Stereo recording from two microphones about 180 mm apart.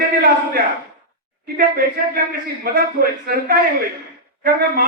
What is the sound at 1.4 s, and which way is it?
A man's voice, 55° right (ahead or behind).